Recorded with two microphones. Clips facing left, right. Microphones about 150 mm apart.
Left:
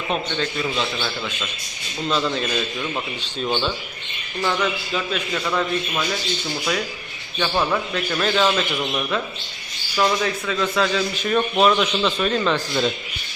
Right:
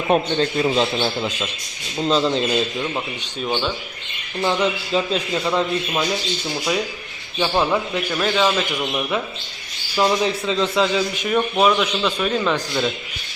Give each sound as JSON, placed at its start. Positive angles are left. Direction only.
{"t": 0.1, "sound": "a man's voice", "side_deg": -35}
{"t": 3.4, "sound": "a man's voice", "side_deg": -5}
{"t": 4.4, "sound": "a man's voice", "side_deg": -25}
{"t": 8.1, "sound": "a man's voice", "side_deg": -5}